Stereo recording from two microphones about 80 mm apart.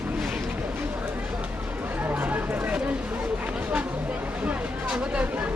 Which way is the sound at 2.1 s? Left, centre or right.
Centre.